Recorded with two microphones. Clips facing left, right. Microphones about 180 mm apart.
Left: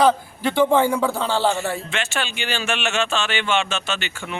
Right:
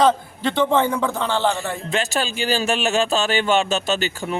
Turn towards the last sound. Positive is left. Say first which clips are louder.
# right 6 dB
turn(degrees=-40)  # may be behind; listen again after turning